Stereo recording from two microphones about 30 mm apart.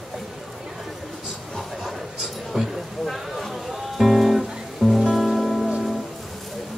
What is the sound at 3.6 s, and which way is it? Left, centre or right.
Music, centre.